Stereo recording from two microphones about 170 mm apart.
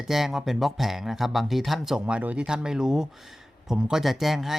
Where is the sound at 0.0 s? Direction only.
Centre (ahead or behind).